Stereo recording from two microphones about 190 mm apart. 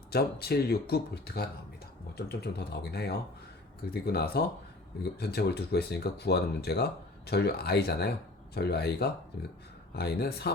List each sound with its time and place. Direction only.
0.1 s speech: 55° left (ahead or behind)